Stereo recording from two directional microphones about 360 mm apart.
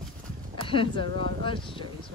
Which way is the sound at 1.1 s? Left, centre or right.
Right.